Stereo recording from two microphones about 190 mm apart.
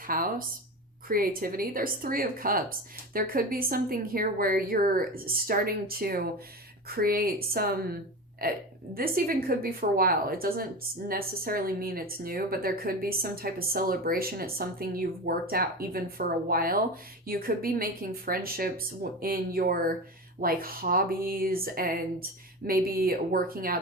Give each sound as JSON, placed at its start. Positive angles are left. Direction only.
{"t": 0.1, "sound": "a woman's voice", "side_deg": -50}